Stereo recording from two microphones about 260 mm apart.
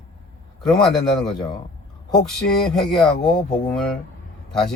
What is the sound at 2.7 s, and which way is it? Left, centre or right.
Speech, centre.